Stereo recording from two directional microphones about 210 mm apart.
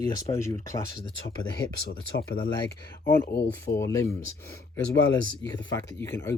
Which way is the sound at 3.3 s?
50° left (ahead or behind).